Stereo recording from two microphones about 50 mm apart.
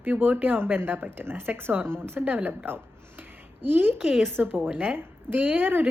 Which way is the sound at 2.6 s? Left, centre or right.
Right.